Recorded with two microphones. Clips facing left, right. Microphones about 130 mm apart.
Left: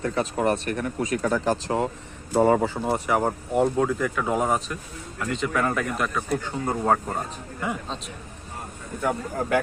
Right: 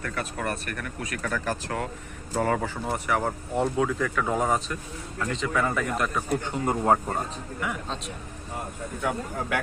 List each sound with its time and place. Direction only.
0.0 s a man's voice: 25° left (ahead or behind); by 6.1 s 5° left (ahead or behind)
6.4 s speech: 15° right (ahead or behind)
9.0 s a man's voice: centre (ahead or behind)